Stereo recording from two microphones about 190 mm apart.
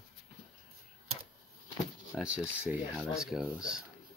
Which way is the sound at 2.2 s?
5° right (ahead or behind).